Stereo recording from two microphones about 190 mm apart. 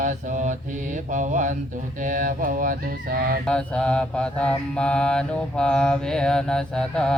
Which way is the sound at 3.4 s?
5° left (ahead or behind).